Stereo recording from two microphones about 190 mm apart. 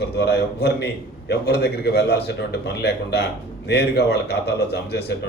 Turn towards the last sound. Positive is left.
turn(degrees=60)  # may be behind; listen again after turning